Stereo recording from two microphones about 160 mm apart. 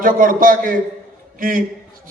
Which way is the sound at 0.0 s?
60° right (ahead or behind).